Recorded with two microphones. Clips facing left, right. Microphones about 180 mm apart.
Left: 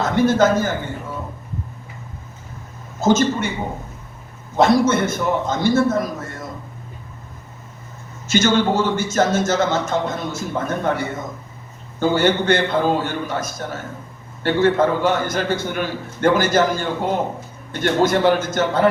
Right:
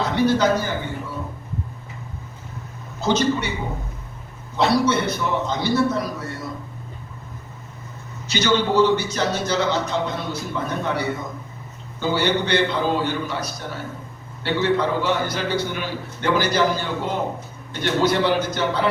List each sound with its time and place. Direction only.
0.0 s a man's voice: 45° left (ahead or behind)
3.0 s a man's voice: 45° left (ahead or behind)
4.5 s a man's voice: 45° left (ahead or behind)
8.3 s a man's voice: 50° left (ahead or behind)